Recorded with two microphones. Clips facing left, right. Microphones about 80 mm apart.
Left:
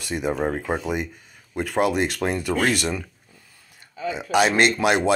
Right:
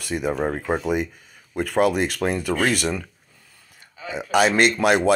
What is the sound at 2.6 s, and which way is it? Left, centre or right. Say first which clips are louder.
Speech: right 1 dB; centre.